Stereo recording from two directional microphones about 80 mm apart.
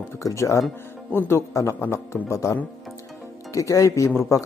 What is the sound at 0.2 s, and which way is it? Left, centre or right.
Speech, left.